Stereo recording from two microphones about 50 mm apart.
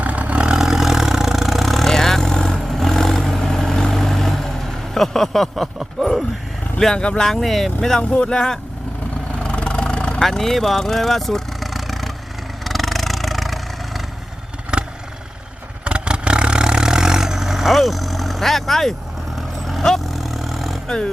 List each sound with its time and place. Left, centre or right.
0.0 s vehicle: right
0.4 s vehicle: centre
4.9 s a sound: centre
6.7 s speech: centre
9.4 s vehicle: left
10.2 s speech: centre
12.6 s vehicle: centre
14.7 s vehicle: centre